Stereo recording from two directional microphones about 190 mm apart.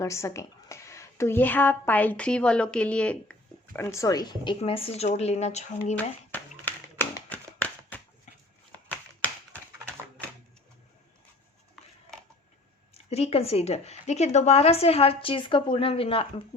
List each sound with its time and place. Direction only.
0.0 s a woman's voice: 15° left (ahead or behind); by 6.0 s 35° left (ahead or behind)
6.0 s a sound: 10° left (ahead or behind)
13.1 s a woman's voice: 35° left (ahead or behind)